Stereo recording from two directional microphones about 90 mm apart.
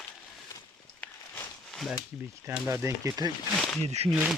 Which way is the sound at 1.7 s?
Centre (ahead or behind).